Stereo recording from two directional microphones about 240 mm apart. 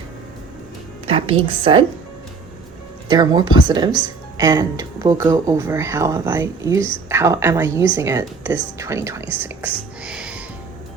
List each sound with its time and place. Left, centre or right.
1.0 s a woman's voice: right
3.1 s speech: centre